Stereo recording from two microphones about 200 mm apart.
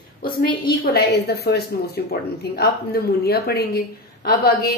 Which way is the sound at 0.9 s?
55° left (ahead or behind).